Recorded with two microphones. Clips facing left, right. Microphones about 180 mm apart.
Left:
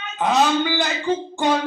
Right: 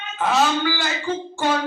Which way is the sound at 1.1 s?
20° left (ahead or behind).